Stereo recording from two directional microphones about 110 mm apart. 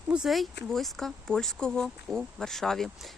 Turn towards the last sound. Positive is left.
turn(degrees=5)  # may be behind; listen again after turning